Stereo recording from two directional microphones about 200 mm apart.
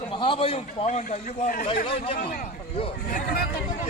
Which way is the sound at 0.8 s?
35° left (ahead or behind).